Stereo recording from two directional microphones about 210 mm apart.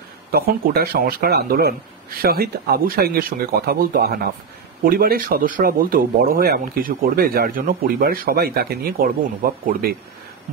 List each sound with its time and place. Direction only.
0.3 s speech: 45° right (ahead or behind)